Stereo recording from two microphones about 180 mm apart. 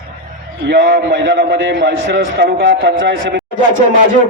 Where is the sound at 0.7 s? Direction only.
65° right (ahead or behind); by 3.4 s 85° right.